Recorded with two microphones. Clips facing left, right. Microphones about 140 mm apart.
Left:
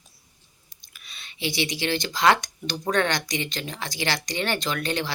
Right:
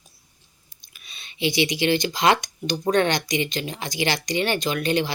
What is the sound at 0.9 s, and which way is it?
Speech, 20° right (ahead or behind).